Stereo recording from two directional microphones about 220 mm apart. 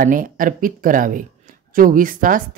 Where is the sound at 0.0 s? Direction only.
40° right (ahead or behind).